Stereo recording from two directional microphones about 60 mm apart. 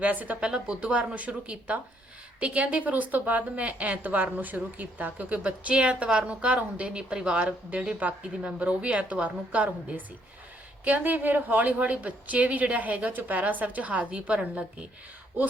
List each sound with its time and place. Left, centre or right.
0.0 s a woman's voice: right